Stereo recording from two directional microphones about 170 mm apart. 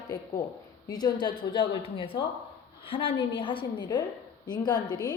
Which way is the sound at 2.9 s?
30° left (ahead or behind).